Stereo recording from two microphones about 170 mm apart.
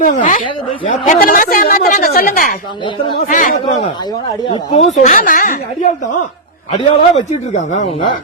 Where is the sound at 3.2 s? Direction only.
45° left (ahead or behind).